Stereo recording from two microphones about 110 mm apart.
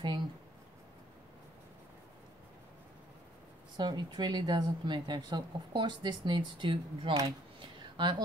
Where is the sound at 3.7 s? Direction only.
40° right (ahead or behind).